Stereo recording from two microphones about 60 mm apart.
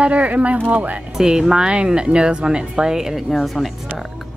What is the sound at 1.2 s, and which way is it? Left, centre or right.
Speech, centre.